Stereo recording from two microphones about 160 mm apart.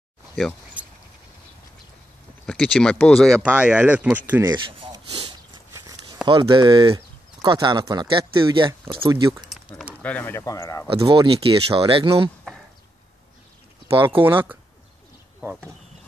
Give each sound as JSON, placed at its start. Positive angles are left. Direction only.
{"t": 2.4, "sound": "speech", "side_deg": 5}
{"t": 3.3, "sound": "speech", "side_deg": -5}
{"t": 4.5, "sound": "speech", "side_deg": -30}
{"t": 5.7, "sound": "a sound", "side_deg": -20}
{"t": 6.2, "sound": "speech", "side_deg": -30}
{"t": 9.7, "sound": "a sound", "side_deg": 10}
{"t": 10.0, "sound": "speech", "side_deg": 10}
{"t": 10.9, "sound": "speech", "side_deg": -35}
{"t": 13.8, "sound": "speech", "side_deg": -15}